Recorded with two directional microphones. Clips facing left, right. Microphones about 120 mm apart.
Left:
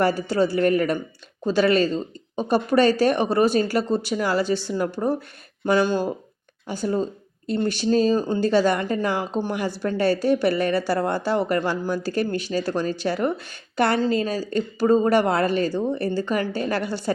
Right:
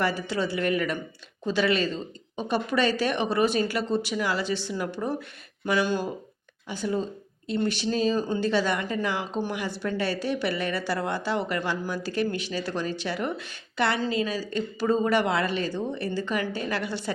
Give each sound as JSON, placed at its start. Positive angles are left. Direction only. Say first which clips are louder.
{"t": 0.0, "sound": "a woman's voice", "louder": "left 6 dB", "side_deg": 40}
{"t": 6.7, "sound": "a woman's voice", "louder": "left 4 dB", "side_deg": 40}